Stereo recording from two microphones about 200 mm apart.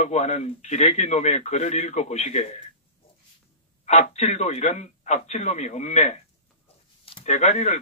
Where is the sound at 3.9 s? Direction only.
35° left (ahead or behind).